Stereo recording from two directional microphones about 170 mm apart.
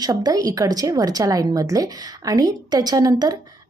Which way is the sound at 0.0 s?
25° right (ahead or behind).